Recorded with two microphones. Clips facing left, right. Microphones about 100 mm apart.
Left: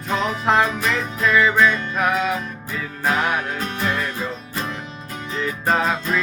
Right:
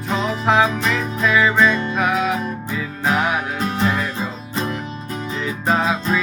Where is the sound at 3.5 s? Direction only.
20° right (ahead or behind).